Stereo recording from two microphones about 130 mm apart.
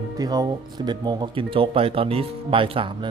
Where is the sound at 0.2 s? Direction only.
30° right (ahead or behind).